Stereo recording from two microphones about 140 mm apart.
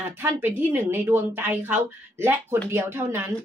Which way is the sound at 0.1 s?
15° right (ahead or behind).